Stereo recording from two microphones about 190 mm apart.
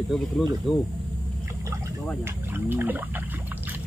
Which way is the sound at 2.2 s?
10° right (ahead or behind).